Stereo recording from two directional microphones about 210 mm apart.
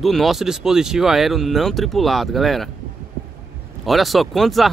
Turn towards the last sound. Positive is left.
turn(degrees=0)  # may be behind; listen again after turning